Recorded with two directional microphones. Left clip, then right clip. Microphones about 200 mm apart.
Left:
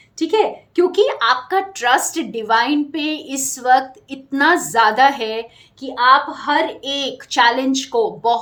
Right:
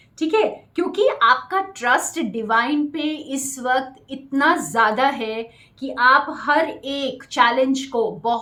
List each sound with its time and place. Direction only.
0.2 s speech: 50° left (ahead or behind)